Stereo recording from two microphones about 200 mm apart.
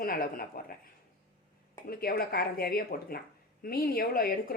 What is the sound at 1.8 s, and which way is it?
A woman's voice, 50° left (ahead or behind).